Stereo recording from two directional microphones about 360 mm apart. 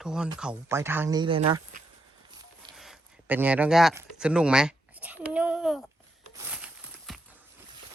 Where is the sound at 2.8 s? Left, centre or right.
Centre.